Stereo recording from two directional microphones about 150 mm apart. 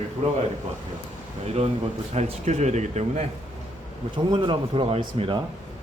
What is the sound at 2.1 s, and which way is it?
Speech, 50° right (ahead or behind).